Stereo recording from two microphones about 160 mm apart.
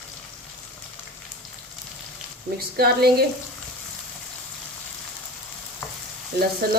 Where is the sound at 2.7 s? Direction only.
75° right (ahead or behind).